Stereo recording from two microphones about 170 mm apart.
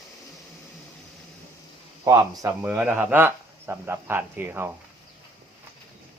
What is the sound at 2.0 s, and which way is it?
Speech, 20° right (ahead or behind).